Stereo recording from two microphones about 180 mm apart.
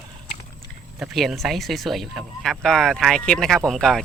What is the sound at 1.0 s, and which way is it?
Speech, centre (ahead or behind).